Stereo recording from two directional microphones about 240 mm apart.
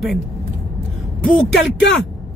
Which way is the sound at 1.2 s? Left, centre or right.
Centre.